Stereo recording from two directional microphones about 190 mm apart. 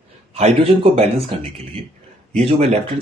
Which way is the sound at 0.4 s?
30° right (ahead or behind).